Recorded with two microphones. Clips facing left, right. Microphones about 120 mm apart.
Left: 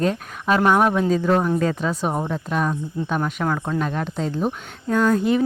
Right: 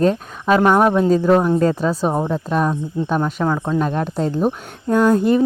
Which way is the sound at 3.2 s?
20° right (ahead or behind).